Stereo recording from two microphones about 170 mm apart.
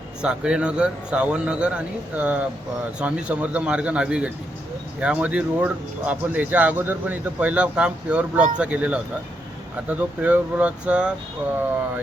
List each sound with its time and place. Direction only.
0.2 s speech: 5° right (ahead or behind)